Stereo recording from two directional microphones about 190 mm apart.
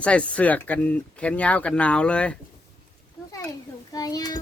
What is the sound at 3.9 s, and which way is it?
Speech, 20° left (ahead or behind).